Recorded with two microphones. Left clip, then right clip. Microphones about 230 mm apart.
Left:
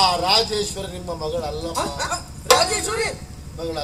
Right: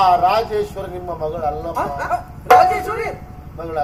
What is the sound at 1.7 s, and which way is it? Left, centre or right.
Speech, left.